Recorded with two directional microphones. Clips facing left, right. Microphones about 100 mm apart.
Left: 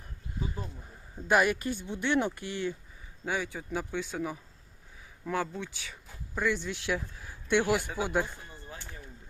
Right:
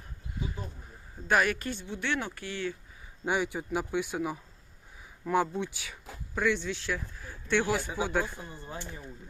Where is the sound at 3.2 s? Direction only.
20° right (ahead or behind).